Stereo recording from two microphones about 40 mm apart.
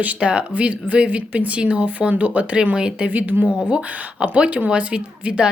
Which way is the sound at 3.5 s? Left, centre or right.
Right.